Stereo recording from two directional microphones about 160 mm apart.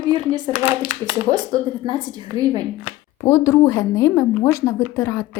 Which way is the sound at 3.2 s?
15° left (ahead or behind).